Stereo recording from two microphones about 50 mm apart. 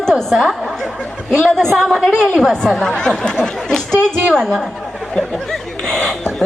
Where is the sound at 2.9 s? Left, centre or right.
Centre.